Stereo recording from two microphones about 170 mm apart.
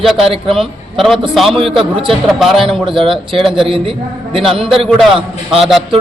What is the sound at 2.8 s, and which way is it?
A man's voice, 30° right (ahead or behind).